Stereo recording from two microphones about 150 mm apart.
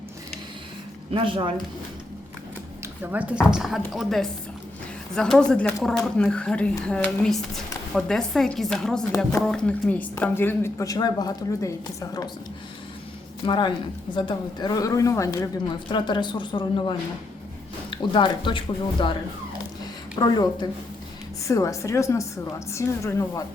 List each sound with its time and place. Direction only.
1.1 s speech: 35° right (ahead or behind)
3.0 s a woman's voice: 10° right (ahead or behind); by 12.3 s 25° left (ahead or behind)
13.4 s speech: 30° left (ahead or behind)
15.9 s speech: 30° left (ahead or behind)
17.9 s speech: 30° left (ahead or behind)
20.1 s speech: 30° left (ahead or behind)